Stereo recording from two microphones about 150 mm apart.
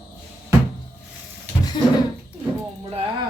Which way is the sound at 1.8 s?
30° left (ahead or behind).